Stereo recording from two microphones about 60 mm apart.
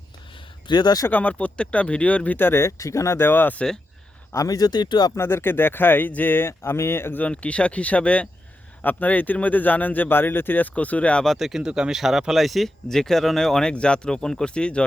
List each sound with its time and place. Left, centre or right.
1.1 s speech: left
2.4 s speech: left
2.7 s speech: left
3.2 s speech: left
4.4 s speech: left
5.1 s speech: left
6.5 s speech: left
7.2 s speech: left
11.3 s speech: centre